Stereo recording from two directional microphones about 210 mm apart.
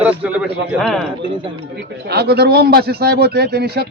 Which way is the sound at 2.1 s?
50° right (ahead or behind).